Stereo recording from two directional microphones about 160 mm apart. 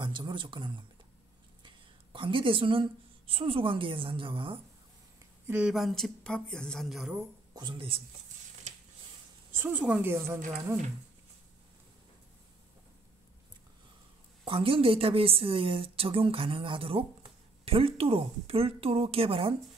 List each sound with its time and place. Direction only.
0.0 s speech: 30° right (ahead or behind)
2.1 s a woman's voice: 35° right (ahead or behind)
5.5 s speech: 5° right (ahead or behind)
7.5 s a woman's voice: 30° right (ahead or behind)
9.5 s speech: 10° right (ahead or behind)
10.1 s speech: 15° right (ahead or behind)
14.4 s a woman's voice: 35° right (ahead or behind)